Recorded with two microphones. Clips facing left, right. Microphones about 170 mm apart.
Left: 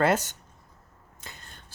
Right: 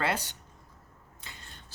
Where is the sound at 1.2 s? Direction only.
45° left (ahead or behind).